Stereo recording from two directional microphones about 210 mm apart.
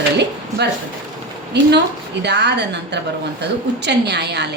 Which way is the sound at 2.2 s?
55° right (ahead or behind).